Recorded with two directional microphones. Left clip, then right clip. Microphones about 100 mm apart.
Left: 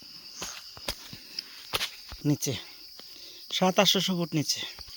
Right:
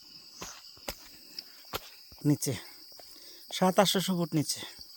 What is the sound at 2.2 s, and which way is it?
Speech, 20° right (ahead or behind).